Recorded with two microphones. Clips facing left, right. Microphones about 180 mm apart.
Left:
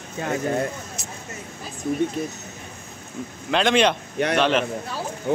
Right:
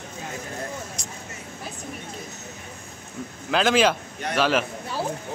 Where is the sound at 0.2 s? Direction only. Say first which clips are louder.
Left 12 dB; 90° left.